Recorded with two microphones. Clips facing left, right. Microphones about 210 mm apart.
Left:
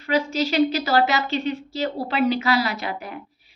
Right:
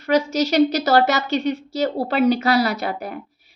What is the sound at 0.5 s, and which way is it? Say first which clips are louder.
A woman's voice: right 4 dB; 40° right (ahead or behind).